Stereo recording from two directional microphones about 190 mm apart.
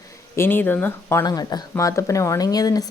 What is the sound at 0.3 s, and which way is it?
A woman's voice, 10° left (ahead or behind).